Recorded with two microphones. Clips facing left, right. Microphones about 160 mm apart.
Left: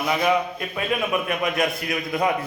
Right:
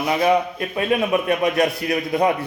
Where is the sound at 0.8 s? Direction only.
35° right (ahead or behind).